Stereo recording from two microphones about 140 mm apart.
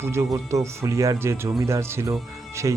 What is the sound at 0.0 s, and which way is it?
Speech, 20° right (ahead or behind).